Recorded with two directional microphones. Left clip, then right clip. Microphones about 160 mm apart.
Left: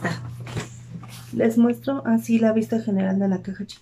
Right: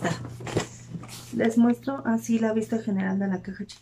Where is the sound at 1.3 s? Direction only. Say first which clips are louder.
Left 3 dB; centre (ahead or behind).